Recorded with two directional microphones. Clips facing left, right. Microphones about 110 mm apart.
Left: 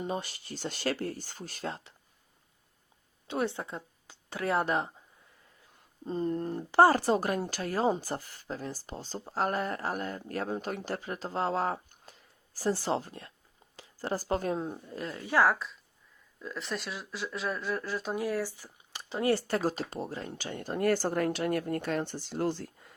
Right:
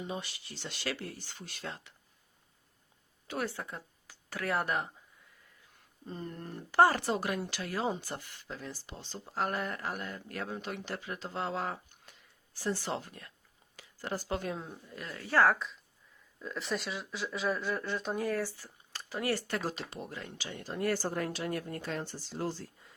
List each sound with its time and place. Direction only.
0.0 s speech: 45° left (ahead or behind)
3.2 s speech: 20° left (ahead or behind)
6.1 s speech: 30° left (ahead or behind)
15.2 s speech: 15° left (ahead or behind)
15.4 s a woman's voice: centre (ahead or behind); by 22.7 s 60° left (ahead or behind)